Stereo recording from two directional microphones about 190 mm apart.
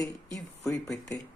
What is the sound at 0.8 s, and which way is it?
Speech, 5° left (ahead or behind).